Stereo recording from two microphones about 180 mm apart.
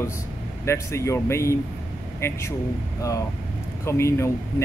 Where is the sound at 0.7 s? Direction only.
15° left (ahead or behind).